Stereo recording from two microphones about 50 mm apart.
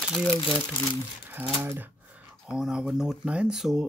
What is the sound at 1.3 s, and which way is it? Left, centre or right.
Speech, right.